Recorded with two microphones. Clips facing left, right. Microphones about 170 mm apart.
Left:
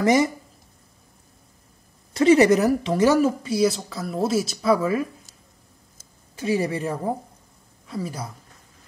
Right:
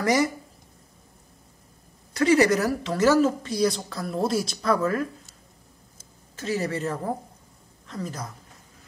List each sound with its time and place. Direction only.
0.0 s speech: 20° left (ahead or behind)
2.1 s a woman's voice: 20° left (ahead or behind)
6.3 s a woman's voice: 15° left (ahead or behind)